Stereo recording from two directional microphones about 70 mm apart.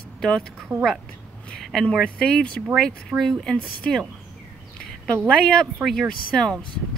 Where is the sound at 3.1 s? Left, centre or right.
Centre.